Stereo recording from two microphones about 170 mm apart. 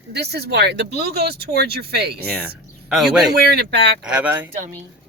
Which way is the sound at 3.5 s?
75° right (ahead or behind).